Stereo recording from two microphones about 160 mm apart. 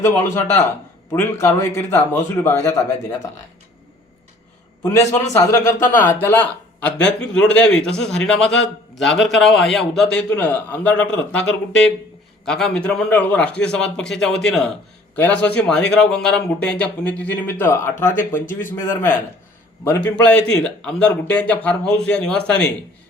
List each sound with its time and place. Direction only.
0.0 s speech: 15° left (ahead or behind)
4.8 s a man's voice: 15° left (ahead or behind)
19.8 s speech: 15° left (ahead or behind)